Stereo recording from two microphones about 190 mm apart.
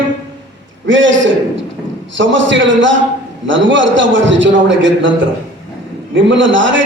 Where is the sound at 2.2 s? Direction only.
75° right (ahead or behind).